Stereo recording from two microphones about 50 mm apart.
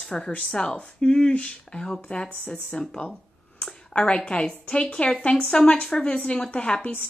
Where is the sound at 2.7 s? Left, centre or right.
Centre.